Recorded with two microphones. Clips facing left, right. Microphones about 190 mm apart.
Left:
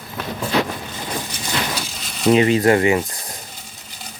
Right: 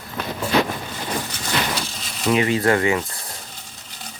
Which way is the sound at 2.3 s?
20° left (ahead or behind).